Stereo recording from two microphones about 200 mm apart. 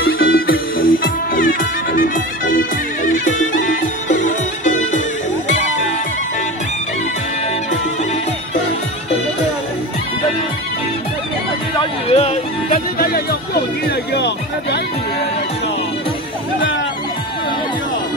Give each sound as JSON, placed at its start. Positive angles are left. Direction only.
{"t": 0.0, "sound": "music", "side_deg": 50}
{"t": 3.6, "sound": "music", "side_deg": 40}
{"t": 11.8, "sound": "music", "side_deg": 30}
{"t": 12.6, "sound": "music", "side_deg": 45}
{"t": 13.8, "sound": "music", "side_deg": 60}